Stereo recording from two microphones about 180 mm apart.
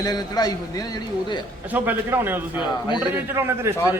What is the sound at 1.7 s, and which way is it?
A man's voice, 10° right (ahead or behind).